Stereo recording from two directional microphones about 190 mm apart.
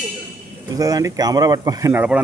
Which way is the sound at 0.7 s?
20° right (ahead or behind).